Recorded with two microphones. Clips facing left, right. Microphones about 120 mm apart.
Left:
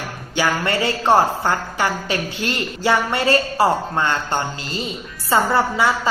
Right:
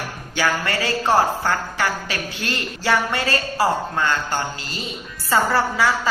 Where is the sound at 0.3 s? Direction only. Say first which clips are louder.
Left 2 dB; 20° left (ahead or behind).